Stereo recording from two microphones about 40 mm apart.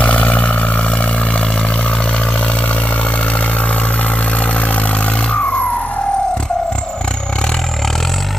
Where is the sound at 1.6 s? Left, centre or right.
Left.